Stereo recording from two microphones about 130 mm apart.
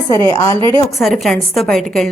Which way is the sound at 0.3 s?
25° left (ahead or behind).